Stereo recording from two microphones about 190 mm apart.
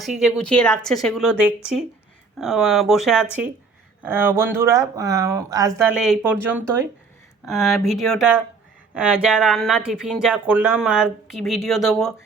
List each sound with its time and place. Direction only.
0.0 s speech: centre (ahead or behind); by 5.9 s 15° right (ahead or behind)
6.0 s speech: 5° right (ahead or behind)